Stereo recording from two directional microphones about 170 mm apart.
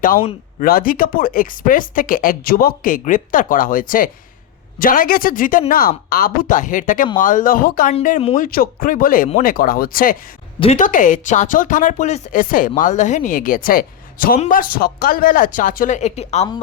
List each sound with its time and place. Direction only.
0.6 s speech: 55° left (ahead or behind); by 16.5 s 40° left (ahead or behind)